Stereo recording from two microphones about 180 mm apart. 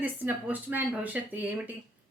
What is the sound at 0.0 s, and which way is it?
Speech, 10° right (ahead or behind).